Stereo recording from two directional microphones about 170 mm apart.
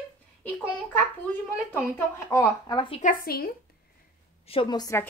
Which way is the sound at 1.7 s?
15° left (ahead or behind).